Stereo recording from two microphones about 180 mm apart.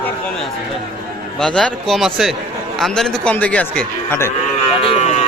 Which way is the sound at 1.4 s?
5° left (ahead or behind).